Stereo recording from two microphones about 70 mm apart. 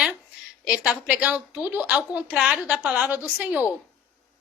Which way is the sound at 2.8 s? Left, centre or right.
Right.